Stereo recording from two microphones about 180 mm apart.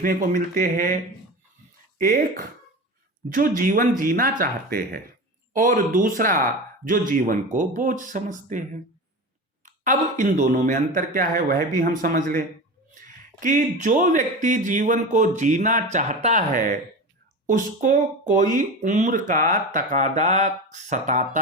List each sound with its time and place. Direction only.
0.0 s a man's voice: 50° right (ahead or behind)
2.0 s speech: 50° right (ahead or behind)
3.2 s a man's voice: 45° right (ahead or behind)
13.4 s a man's voice: 45° right (ahead or behind)